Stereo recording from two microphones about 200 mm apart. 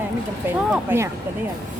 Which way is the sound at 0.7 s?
10° right (ahead or behind).